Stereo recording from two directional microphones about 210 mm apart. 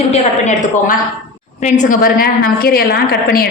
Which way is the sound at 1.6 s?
40° left (ahead or behind).